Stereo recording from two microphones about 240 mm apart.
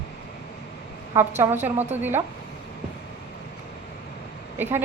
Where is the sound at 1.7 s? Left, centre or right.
Right.